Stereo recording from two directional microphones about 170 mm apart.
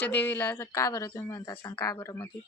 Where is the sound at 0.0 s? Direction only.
10° left (ahead or behind).